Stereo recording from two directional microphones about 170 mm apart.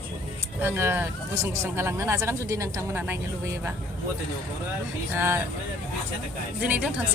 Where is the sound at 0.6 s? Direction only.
15° right (ahead or behind).